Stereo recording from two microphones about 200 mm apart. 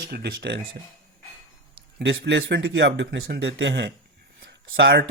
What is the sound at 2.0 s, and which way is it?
Speech, 60° right (ahead or behind).